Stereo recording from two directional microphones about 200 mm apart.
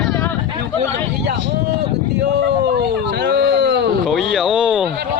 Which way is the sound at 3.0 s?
55° right (ahead or behind).